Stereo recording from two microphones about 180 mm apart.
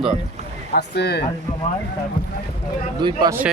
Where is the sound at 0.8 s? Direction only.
65° left (ahead or behind).